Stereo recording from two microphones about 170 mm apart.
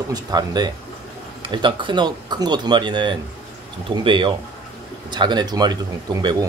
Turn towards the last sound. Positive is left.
turn(degrees=-25)  # may be behind; listen again after turning